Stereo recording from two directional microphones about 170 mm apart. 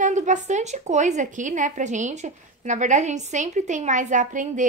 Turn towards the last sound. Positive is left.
turn(degrees=-50)  # may be behind; listen again after turning